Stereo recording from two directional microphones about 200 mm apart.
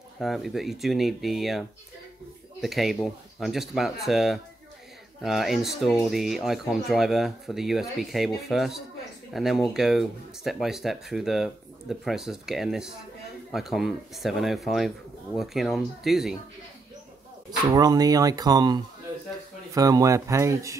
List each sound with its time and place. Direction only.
0.2 s speech: centre (ahead or behind)
17.5 s speech: 20° right (ahead or behind)